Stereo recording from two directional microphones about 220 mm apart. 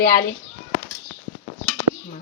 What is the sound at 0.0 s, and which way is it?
Speech, 45° left (ahead or behind).